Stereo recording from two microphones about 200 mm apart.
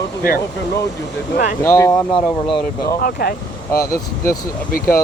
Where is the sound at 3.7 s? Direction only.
15° left (ahead or behind).